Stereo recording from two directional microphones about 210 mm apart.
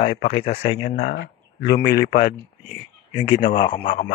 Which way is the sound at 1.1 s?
50° left (ahead or behind).